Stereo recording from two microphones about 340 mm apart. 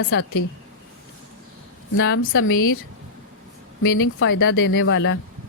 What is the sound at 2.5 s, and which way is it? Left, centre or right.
Speech, left.